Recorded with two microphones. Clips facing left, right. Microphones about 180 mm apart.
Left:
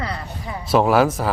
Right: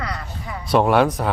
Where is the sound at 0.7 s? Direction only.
Centre (ahead or behind).